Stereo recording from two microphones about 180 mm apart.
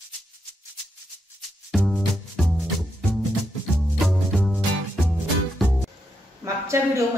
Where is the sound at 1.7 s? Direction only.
Centre (ahead or behind).